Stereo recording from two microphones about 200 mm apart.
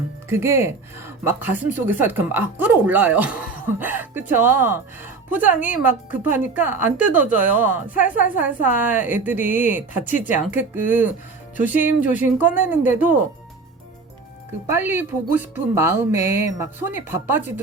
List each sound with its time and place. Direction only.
0.3 s speech: 10° right (ahead or behind)
14.7 s speech: 10° right (ahead or behind)